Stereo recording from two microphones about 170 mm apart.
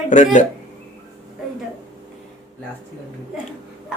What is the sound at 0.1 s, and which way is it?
Speech, 45° left (ahead or behind).